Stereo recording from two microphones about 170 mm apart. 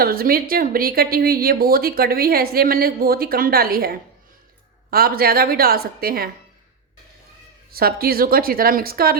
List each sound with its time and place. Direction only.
0.0 s speech: 60° right (ahead or behind)
7.7 s speech: 60° right (ahead or behind)